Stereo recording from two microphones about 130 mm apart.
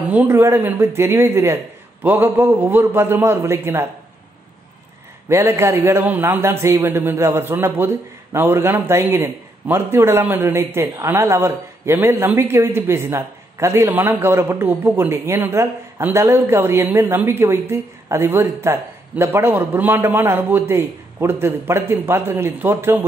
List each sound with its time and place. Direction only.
0.1 s a man's voice: 15° right (ahead or behind)
5.3 s a man's voice: 20° right (ahead or behind)